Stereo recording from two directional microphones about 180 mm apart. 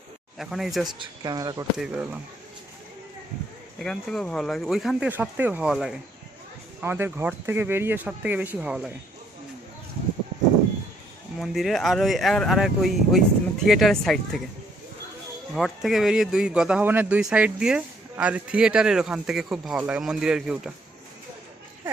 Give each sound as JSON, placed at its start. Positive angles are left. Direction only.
{"t": 0.3, "sound": "speech", "side_deg": 0}
{"t": 0.9, "sound": "speech", "side_deg": -20}
{"t": 1.8, "sound": "speech", "side_deg": -5}
{"t": 3.8, "sound": "speech", "side_deg": 5}
{"t": 6.8, "sound": "speech", "side_deg": -10}
{"t": 11.3, "sound": "speech", "side_deg": 0}
{"t": 15.5, "sound": "speech", "side_deg": 0}